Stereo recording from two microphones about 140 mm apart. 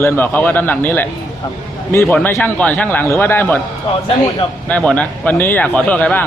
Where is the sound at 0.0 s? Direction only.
15° left (ahead or behind).